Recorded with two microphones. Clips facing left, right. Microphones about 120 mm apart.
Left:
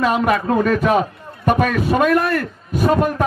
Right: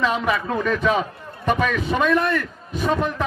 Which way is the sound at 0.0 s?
50° left (ahead or behind).